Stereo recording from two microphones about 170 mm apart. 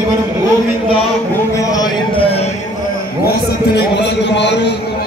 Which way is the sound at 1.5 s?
20° left (ahead or behind).